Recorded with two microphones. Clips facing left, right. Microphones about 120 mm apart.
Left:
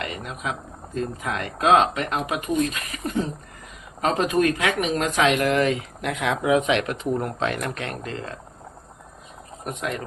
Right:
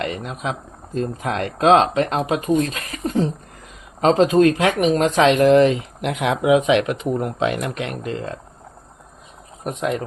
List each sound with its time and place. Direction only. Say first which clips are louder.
0.0 s speech: right 5 dB; 30° right (ahead or behind)